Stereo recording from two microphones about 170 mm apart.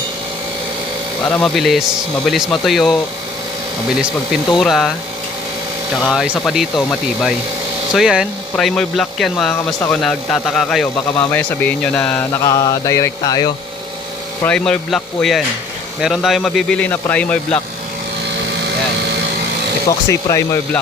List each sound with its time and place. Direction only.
1.3 s speech: 5° left (ahead or behind)
4.6 s speech: centre (ahead or behind)
6.1 s speech: centre (ahead or behind)
11.2 s mantra: 10° left (ahead or behind)
14.4 s speech: 5° left (ahead or behind)
20.1 s mantra: 15° left (ahead or behind)